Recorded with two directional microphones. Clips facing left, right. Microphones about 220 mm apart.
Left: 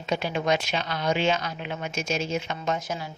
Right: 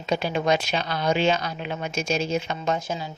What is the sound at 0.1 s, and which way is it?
A woman's voice, 35° right (ahead or behind).